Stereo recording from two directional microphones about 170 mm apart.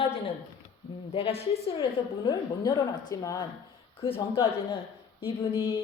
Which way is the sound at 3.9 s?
35° left (ahead or behind).